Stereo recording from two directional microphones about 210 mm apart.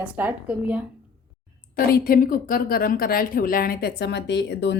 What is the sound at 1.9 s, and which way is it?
A woman's voice, 45° left (ahead or behind).